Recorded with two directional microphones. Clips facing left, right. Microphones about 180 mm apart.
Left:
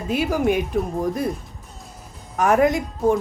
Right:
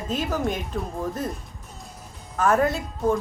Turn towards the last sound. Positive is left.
turn(degrees=15)  # may be behind; listen again after turning